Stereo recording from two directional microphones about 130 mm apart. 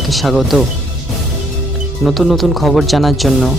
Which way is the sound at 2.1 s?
Centre (ahead or behind).